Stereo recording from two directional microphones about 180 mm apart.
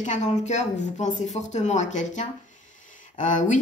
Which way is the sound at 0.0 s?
40° left (ahead or behind).